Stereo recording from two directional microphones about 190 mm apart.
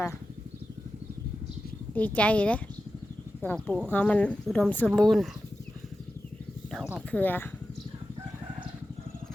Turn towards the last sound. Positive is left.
turn(degrees=10)  # may be behind; listen again after turning